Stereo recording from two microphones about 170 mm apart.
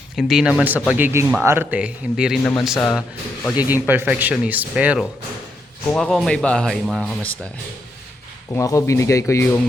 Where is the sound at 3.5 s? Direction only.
10° right (ahead or behind).